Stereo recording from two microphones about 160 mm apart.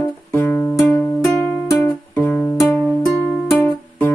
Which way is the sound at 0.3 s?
10° left (ahead or behind).